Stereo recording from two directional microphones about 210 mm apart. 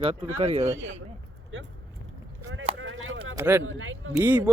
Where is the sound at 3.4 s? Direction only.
10° right (ahead or behind).